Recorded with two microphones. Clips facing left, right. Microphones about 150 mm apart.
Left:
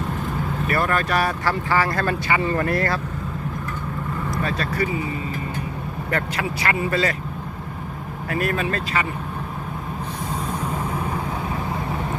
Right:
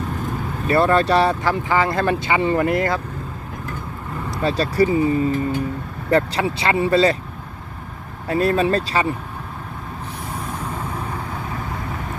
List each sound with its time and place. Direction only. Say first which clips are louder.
0.7 s speech: right 7 dB; 25° right (ahead or behind)
4.4 s speech: right 10 dB; 35° right (ahead or behind)
6.1 s speech: right 8 dB; 30° right (ahead or behind)
8.3 s speech: right 6 dB; 30° right (ahead or behind)